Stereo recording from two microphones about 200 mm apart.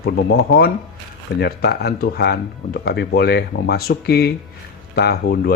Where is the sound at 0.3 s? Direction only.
50° left (ahead or behind).